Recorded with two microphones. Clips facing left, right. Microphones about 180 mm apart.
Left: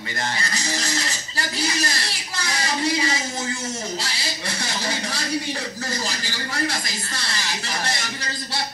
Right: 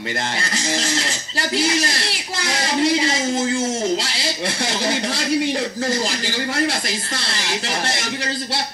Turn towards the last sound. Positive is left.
turn(degrees=-75)  # may be behind; listen again after turning